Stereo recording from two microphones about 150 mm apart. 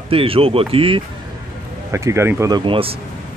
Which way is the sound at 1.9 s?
20° right (ahead or behind).